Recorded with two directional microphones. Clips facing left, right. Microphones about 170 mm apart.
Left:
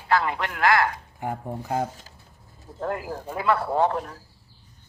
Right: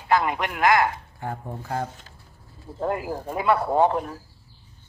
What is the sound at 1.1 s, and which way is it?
Speech, 15° left (ahead or behind).